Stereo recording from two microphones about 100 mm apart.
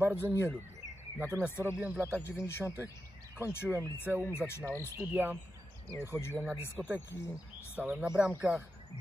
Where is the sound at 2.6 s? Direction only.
25° right (ahead or behind).